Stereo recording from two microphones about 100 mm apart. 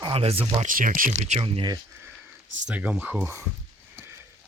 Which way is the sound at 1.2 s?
70° right (ahead or behind).